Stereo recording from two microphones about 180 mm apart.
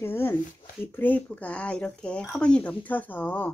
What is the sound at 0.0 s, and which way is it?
Speech, 10° left (ahead or behind).